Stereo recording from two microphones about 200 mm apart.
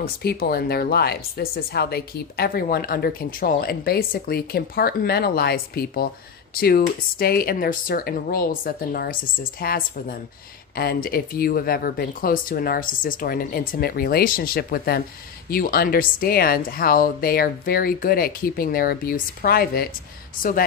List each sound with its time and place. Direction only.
0.0 s speech: 50° left (ahead or behind)